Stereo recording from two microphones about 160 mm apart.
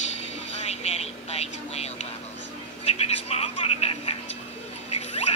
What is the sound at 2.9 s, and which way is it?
Speech, 40° left (ahead or behind).